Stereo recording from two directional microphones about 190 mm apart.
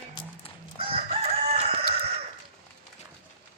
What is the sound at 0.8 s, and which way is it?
Chicken, 30° right (ahead or behind).